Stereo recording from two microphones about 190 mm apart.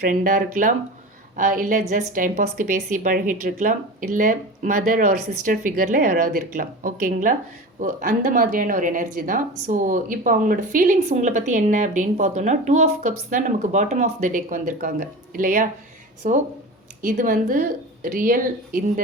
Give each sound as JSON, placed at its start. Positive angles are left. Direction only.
{"t": 0.0, "sound": "speech", "side_deg": -45}